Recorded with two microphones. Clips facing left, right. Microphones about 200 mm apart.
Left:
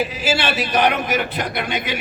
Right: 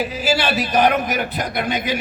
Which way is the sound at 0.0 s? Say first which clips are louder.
Right 1 dB; 40° right (ahead or behind).